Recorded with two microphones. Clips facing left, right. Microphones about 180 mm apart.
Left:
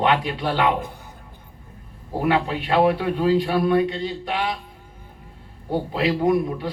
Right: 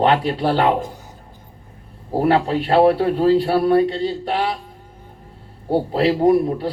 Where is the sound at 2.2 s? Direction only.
40° right (ahead or behind).